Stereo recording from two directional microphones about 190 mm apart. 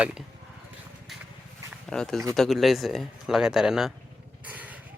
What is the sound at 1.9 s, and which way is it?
Speech, 5° left (ahead or behind).